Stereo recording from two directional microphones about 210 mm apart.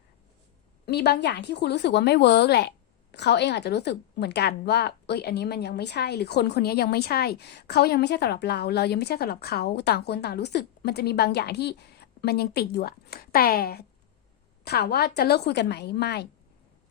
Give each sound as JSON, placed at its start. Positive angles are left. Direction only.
{"t": 0.9, "sound": "a woman's voice", "side_deg": 50}